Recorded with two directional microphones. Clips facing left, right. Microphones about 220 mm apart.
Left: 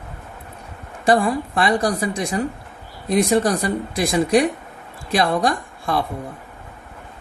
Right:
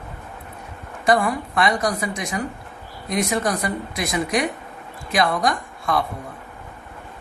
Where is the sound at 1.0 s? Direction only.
30° left (ahead or behind).